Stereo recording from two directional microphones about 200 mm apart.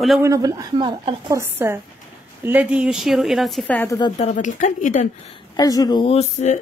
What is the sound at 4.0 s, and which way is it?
Speech, 30° left (ahead or behind).